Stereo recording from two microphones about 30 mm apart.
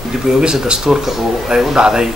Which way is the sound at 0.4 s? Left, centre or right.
Right.